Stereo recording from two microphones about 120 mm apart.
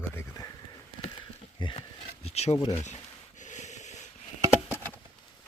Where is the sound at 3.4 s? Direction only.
85° left.